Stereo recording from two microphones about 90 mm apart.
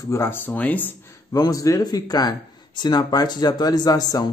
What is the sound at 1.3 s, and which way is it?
Speech, 40° left (ahead or behind).